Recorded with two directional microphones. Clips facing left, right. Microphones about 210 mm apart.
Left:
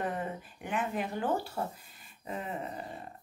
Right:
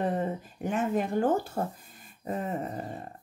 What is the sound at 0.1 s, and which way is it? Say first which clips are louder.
Speech: right 6 dB; 40° right (ahead or behind).